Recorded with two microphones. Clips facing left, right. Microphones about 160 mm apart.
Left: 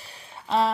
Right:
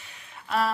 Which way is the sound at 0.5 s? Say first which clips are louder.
Left 3 dB; 25° left (ahead or behind).